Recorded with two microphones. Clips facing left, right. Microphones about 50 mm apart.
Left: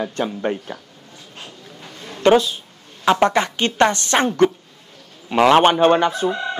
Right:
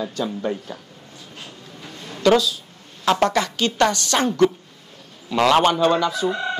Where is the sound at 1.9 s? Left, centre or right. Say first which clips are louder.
Even; left.